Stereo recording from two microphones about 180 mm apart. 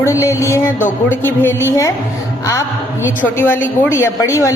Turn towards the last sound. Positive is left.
turn(degrees=20)  # may be behind; listen again after turning